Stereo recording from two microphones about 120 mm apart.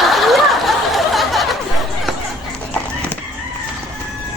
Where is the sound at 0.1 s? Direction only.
Centre (ahead or behind).